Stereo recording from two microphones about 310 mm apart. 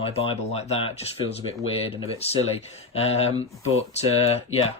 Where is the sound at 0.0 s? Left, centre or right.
Centre.